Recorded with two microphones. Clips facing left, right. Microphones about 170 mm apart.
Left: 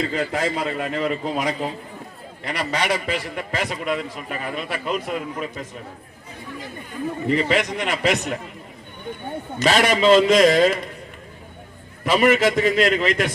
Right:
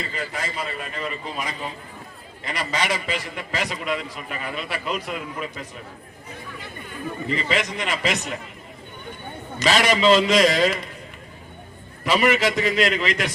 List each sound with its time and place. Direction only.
0.1 s a man's voice: 80° left
2.7 s a man's voice: 55° left (ahead or behind)
7.3 s a man's voice: 55° left (ahead or behind)
9.6 s a man's voice: 50° left (ahead or behind)
12.0 s a man's voice: 50° left (ahead or behind)